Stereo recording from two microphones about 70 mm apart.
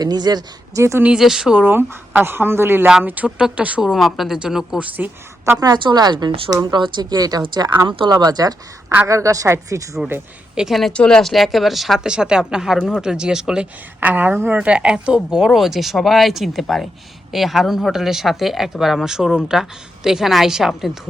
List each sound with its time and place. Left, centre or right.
0.0 s speech: right
0.7 s speech: right
1.2 s speech: centre
1.6 s speech: right
3.2 s speech: centre
3.9 s speech: centre
4.8 s a woman's voice: right
5.5 s speech: right
9.0 s a woman's voice: right
10.5 s a woman's voice: centre
10.9 s speech: centre
14.0 s speech: right; by 20.9 s centre